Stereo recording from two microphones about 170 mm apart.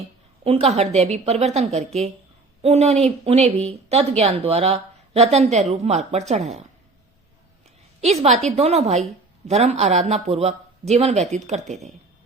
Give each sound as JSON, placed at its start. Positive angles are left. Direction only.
{"t": 0.4, "sound": "a woman's voice", "side_deg": -40}
{"t": 8.0, "sound": "a woman's voice", "side_deg": -40}